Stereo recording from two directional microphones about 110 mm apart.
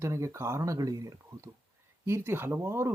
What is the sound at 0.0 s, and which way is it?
Speech, 25° right (ahead or behind).